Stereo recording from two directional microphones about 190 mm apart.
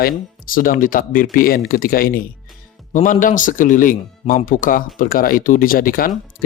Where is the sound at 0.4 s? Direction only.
45° left (ahead or behind).